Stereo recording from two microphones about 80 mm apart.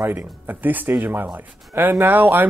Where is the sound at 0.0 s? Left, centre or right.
Right.